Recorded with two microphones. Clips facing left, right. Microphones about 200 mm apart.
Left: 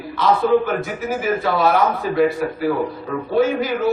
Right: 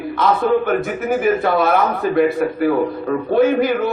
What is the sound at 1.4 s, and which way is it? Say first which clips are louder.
A man's voice: right 1 dB; 55° right (ahead or behind).